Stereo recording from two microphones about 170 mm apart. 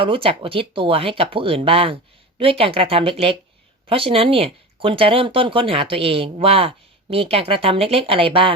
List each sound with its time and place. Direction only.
0.0 s speech: 30° right (ahead or behind)